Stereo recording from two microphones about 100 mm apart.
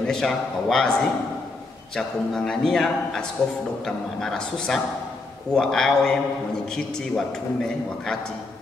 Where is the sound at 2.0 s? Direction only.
5° left (ahead or behind).